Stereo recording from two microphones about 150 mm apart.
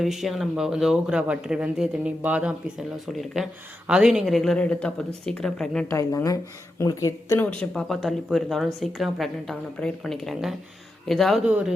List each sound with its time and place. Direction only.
0.0 s a woman's voice: centre (ahead or behind)
5.9 s speech: 20° left (ahead or behind)
7.7 s a woman's voice: centre (ahead or behind)